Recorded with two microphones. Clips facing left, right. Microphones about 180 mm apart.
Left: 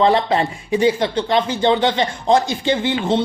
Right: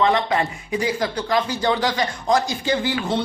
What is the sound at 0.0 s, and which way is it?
Speech, 30° left (ahead or behind).